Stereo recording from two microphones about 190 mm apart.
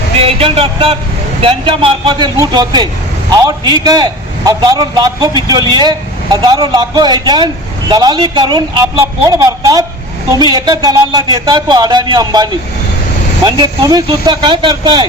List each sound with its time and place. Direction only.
0.2 s a man's voice: 30° right (ahead or behind)